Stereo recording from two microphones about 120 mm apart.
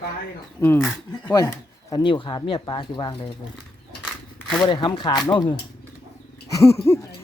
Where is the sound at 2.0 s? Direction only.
40° left (ahead or behind).